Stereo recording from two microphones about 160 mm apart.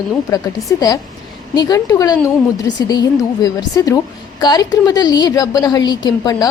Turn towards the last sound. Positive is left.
turn(degrees=25)  # may be behind; listen again after turning